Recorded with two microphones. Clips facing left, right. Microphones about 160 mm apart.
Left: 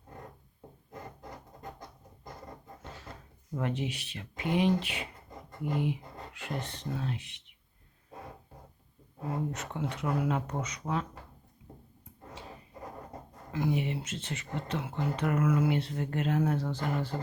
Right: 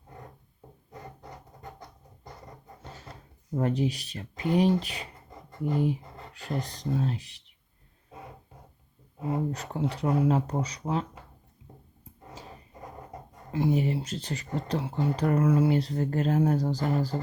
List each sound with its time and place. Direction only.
3.5 s speech: 35° right (ahead or behind)
9.5 s speech: 35° right (ahead or behind)
13.5 s speech: 30° right (ahead or behind)